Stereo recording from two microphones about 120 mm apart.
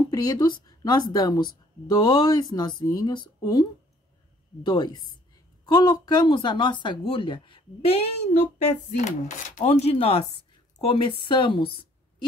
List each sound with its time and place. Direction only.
0.1 s speech: 35° left (ahead or behind)
4.6 s speech: 35° left (ahead or behind); by 9.1 s 75° left (ahead or behind)
9.6 s speech: 65° left (ahead or behind); by 11.7 s 45° left (ahead or behind)